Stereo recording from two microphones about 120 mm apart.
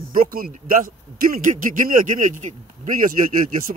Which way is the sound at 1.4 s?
90° right.